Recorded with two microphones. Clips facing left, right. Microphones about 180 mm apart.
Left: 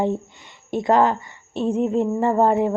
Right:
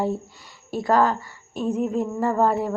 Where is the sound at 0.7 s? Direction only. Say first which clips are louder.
Left 2 dB; 20° left (ahead or behind).